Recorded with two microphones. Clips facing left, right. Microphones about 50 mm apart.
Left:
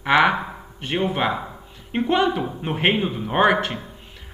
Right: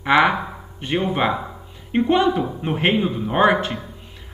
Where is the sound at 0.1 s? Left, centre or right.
Left.